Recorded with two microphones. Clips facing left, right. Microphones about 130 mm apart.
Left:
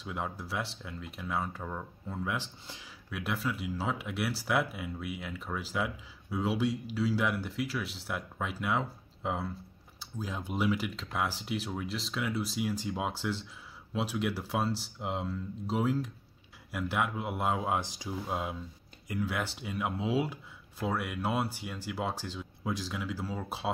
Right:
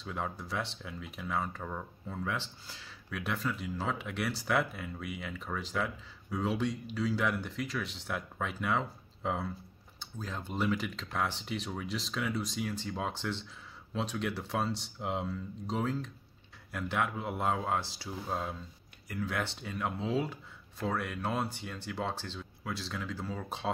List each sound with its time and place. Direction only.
0.0 s speech: 5° left (ahead or behind)
2.6 s speech: 20° left (ahead or behind)
3.1 s speech: 5° left (ahead or behind)